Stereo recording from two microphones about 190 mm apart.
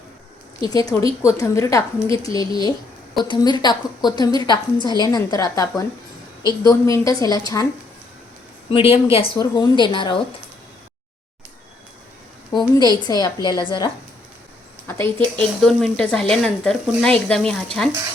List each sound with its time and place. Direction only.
0.6 s a woman's voice: 20° left (ahead or behind)
8.7 s a woman's voice: 30° left (ahead or behind)
12.5 s a woman's voice: 20° left (ahead or behind)
14.8 s a woman's voice: 10° left (ahead or behind)